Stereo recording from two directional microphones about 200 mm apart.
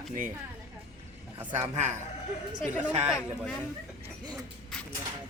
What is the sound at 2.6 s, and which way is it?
Speech, 5° right (ahead or behind).